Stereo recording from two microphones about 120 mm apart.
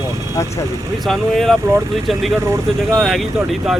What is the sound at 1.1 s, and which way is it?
Speech, centre (ahead or behind).